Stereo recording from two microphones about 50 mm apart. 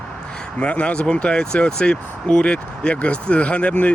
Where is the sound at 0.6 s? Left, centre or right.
Left.